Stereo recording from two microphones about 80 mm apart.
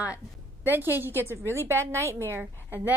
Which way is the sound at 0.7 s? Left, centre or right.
Right.